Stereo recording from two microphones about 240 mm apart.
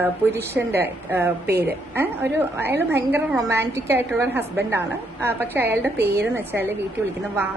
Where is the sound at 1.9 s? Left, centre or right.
Centre.